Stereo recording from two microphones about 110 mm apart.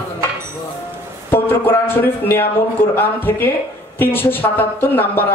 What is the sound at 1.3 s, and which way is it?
Speech, 20° left (ahead or behind).